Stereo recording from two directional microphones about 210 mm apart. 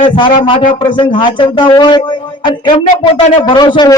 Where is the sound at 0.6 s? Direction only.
35° left (ahead or behind).